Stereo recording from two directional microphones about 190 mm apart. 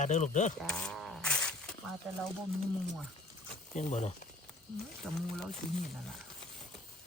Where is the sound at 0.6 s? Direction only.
5° left (ahead or behind).